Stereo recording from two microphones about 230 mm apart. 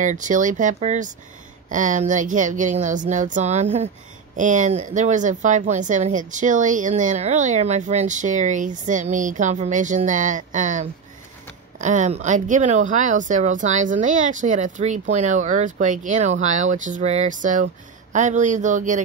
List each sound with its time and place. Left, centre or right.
0.0 s speech: right